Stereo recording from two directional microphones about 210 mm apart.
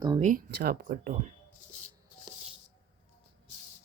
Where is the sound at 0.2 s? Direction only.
40° right (ahead or behind).